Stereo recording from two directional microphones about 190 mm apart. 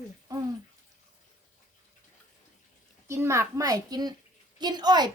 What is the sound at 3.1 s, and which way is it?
A child's voice, 15° right (ahead or behind).